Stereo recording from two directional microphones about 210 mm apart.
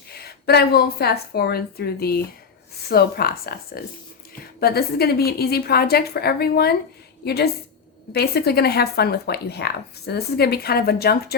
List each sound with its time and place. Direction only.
0.1 s speech: 50° left (ahead or behind)